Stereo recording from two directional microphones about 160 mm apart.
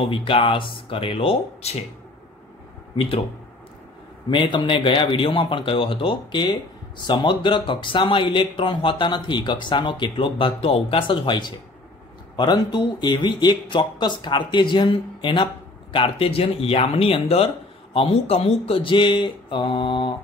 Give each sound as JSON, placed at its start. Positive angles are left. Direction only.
{"t": 0.0, "sound": "speech", "side_deg": 35}
{"t": 4.3, "sound": "speech", "side_deg": 30}